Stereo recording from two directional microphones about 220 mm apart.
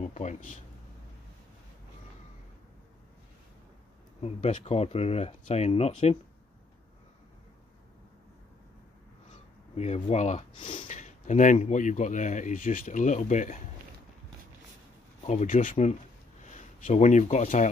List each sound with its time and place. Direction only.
0.0 s speech: 30° left (ahead or behind)
4.2 s speech: 30° left (ahead or behind)
9.3 s speech: 30° left (ahead or behind)
15.2 s speech: 35° left (ahead or behind)